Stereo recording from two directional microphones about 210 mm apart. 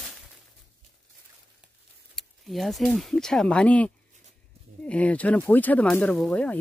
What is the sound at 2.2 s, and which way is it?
Speech, centre (ahead or behind).